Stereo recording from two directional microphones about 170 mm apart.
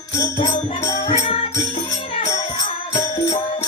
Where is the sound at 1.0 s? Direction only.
45° left (ahead or behind).